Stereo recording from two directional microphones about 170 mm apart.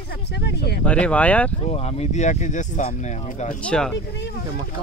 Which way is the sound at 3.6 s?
5° left (ahead or behind).